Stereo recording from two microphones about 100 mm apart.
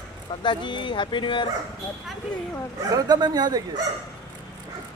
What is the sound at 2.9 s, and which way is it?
Speech, 40° right (ahead or behind).